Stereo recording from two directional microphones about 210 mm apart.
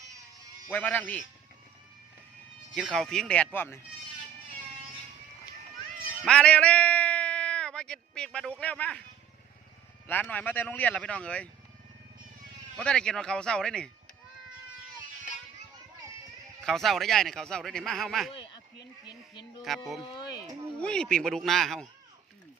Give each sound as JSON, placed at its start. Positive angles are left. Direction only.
{"t": 0.7, "sound": "speech", "side_deg": 10}
{"t": 2.7, "sound": "speech", "side_deg": 0}
{"t": 6.2, "sound": "a man's voice", "side_deg": 5}
{"t": 10.1, "sound": "speech", "side_deg": 10}
{"t": 12.7, "sound": "speech", "side_deg": 5}
{"t": 16.6, "sound": "speech", "side_deg": 0}
{"t": 19.0, "sound": "speech", "side_deg": 20}
{"t": 19.6, "sound": "speech", "side_deg": 0}